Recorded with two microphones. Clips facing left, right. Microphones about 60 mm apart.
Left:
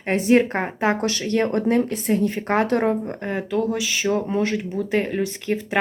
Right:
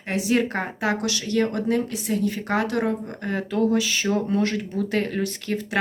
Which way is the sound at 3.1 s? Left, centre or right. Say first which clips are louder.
Left 2 dB; left.